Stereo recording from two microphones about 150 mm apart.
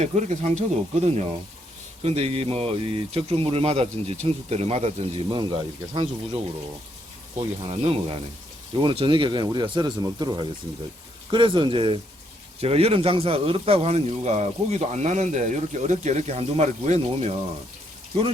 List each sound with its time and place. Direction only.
0.0 s speech: 50° right (ahead or behind)
7.3 s speech: 40° right (ahead or behind)